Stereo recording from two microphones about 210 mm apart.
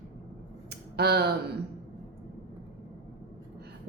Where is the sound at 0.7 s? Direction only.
50° right (ahead or behind).